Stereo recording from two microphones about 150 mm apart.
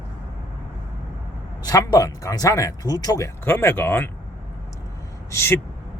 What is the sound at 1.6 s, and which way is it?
Speech, 25° left (ahead or behind).